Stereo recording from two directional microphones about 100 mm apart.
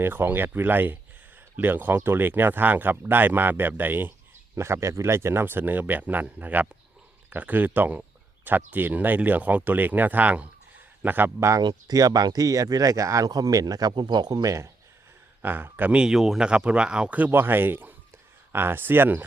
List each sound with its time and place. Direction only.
0.0 s speech: 20° right (ahead or behind)
11.6 s speech: 40° right (ahead or behind)
15.4 s speech: 20° right (ahead or behind)